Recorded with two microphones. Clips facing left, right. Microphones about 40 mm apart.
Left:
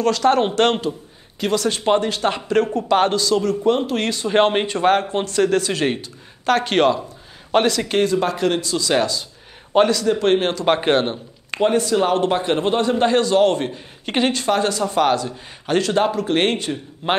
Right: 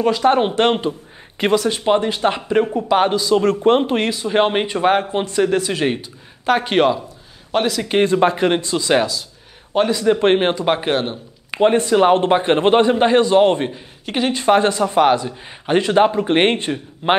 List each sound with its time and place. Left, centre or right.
0.0 s a man's voice: centre
1.5 s a man's voice: centre
3.4 s speech: right
3.9 s a man's voice: centre
8.0 s a man's voice: right
10.8 s speech: centre
11.6 s a man's voice: right
12.9 s a man's voice: right
14.0 s speech: centre
14.3 s a man's voice: right